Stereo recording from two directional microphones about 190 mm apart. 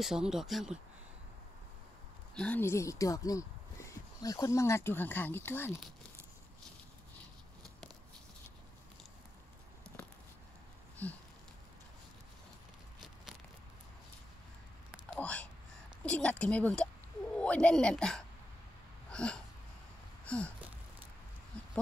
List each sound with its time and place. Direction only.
0.0 s a woman's voice: centre (ahead or behind)
2.3 s speech: 5° left (ahead or behind)
9.9 s a sound: 10° left (ahead or behind)
15.1 s a woman's voice: 5° left (ahead or behind)
19.0 s wheeze: 5° left (ahead or behind)
20.2 s a sound: 5° left (ahead or behind)
21.5 s dog: 5° left (ahead or behind)